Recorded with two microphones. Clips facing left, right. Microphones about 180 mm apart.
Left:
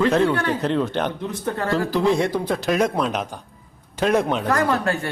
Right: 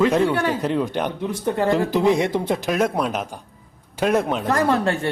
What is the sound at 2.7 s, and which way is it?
A man's voice, 5° right (ahead or behind).